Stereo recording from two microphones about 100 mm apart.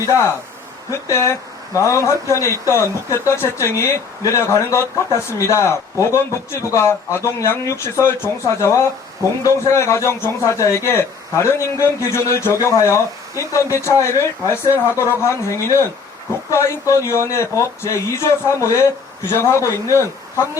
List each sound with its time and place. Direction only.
0.1 s speech: 30° left (ahead or behind)